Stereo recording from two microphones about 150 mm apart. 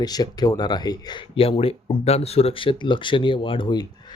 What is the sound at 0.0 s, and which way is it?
Speech, 25° left (ahead or behind).